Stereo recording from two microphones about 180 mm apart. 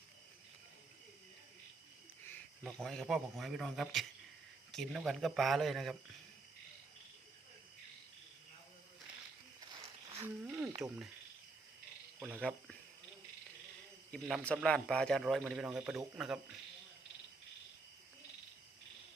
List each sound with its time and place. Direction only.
2.6 s a man's voice: 5° left (ahead or behind)
9.7 s a sound: 30° right (ahead or behind)
10.2 s a sound: 10° right (ahead or behind)
10.8 s a man's voice: 5° right (ahead or behind)
12.2 s a man's voice: centre (ahead or behind)
14.1 s a man's voice: 5° left (ahead or behind)